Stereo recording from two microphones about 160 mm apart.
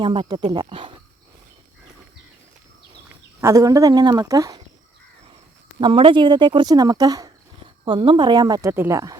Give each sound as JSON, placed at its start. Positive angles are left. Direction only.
{"t": 0.0, "sound": "a woman's voice", "side_deg": -30}
{"t": 3.4, "sound": "a woman's voice", "side_deg": -20}
{"t": 5.8, "sound": "a woman's voice", "side_deg": -30}